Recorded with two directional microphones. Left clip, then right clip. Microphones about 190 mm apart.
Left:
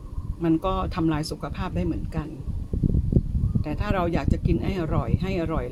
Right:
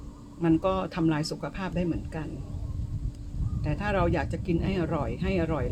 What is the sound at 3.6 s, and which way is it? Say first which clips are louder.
Speech: even; 15° left (ahead or behind).